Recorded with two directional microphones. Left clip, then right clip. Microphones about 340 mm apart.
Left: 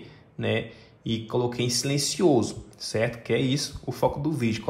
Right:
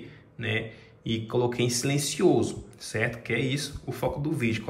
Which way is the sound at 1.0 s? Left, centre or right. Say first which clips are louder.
Even; centre.